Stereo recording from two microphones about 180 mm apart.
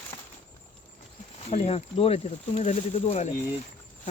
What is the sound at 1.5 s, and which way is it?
Speech, 35° left (ahead or behind).